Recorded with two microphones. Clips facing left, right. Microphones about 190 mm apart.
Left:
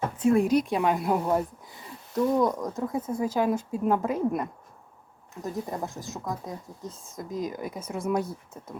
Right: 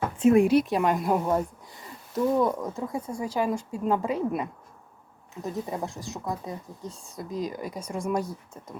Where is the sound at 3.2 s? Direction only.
10° right (ahead or behind).